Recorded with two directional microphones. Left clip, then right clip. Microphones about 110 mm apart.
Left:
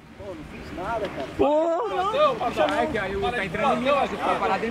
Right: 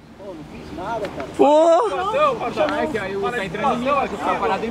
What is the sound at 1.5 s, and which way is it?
Speech, 20° right (ahead or behind).